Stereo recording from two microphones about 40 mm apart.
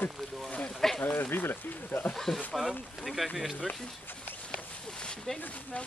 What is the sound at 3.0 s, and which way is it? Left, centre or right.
Speech, centre.